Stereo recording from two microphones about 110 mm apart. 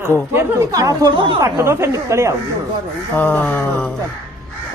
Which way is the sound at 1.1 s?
50° right (ahead or behind).